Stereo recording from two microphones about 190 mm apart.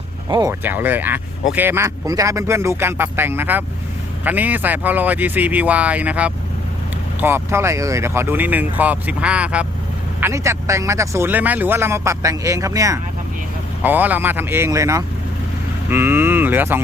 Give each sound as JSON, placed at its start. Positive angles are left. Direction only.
{"t": 0.3, "sound": "speech", "side_deg": -20}
{"t": 0.6, "sound": "speech", "side_deg": -10}